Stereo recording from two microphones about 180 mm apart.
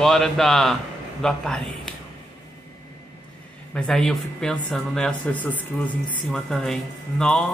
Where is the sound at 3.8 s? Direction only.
5° left (ahead or behind).